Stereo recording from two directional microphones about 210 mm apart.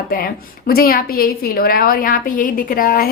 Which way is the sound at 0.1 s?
45° left (ahead or behind).